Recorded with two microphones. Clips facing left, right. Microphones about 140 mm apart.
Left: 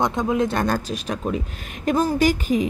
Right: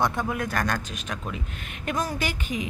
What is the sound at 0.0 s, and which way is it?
A woman's voice, 20° left (ahead or behind).